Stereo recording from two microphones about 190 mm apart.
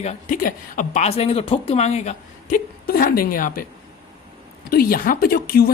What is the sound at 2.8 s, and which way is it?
Speech, 50° left (ahead or behind).